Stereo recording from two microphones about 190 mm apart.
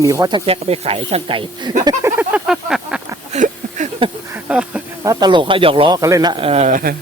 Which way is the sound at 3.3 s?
40° right (ahead or behind).